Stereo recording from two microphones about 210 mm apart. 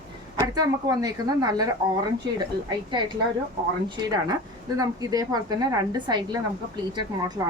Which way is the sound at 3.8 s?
20° right (ahead or behind).